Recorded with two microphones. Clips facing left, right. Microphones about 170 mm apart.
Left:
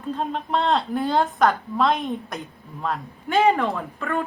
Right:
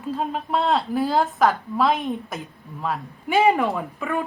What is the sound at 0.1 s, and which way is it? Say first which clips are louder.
A woman's voice: even; 5° right (ahead or behind).